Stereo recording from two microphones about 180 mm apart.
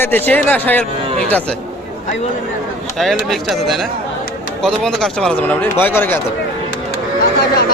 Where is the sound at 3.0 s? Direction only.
Centre (ahead or behind).